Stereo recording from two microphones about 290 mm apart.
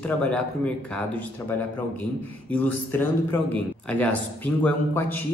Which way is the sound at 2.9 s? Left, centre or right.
Centre.